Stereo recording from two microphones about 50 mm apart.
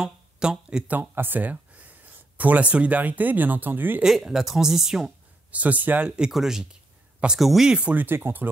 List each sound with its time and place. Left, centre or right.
0.0 s a sound: centre
0.8 s speech: right
4.0 s speech: centre
5.5 s speech: right
6.0 s speech: centre
6.7 s a sound: centre
7.3 s speech: centre
7.9 s speech: right